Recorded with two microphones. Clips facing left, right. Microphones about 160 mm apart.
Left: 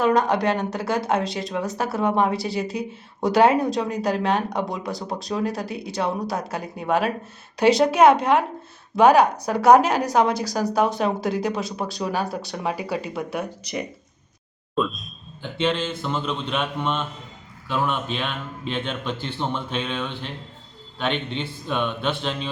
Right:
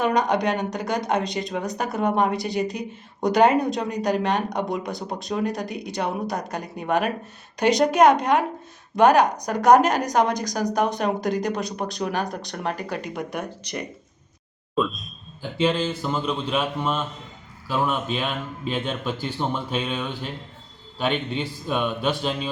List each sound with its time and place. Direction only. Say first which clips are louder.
0.0 s speech: left 2 dB; 5° left (ahead or behind)
14.8 s a sound: even; centre (ahead or behind)
15.6 s speech: right 1 dB; 5° right (ahead or behind)